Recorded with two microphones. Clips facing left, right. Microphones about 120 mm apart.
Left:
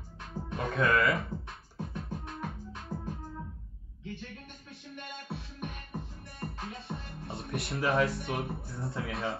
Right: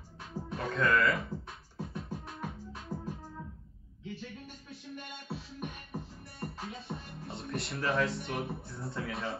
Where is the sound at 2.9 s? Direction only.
25° left (ahead or behind).